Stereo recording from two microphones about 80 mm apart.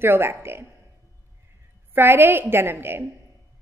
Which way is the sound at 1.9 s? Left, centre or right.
Right.